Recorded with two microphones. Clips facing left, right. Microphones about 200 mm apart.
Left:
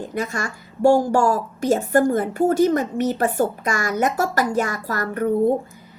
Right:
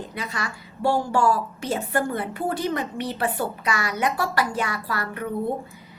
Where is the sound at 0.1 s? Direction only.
45° left (ahead or behind).